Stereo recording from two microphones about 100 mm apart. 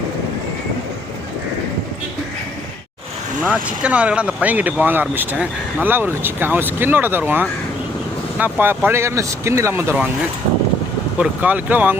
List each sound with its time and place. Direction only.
3.4 s speech: 10° right (ahead or behind)
11.2 s speech: 15° right (ahead or behind)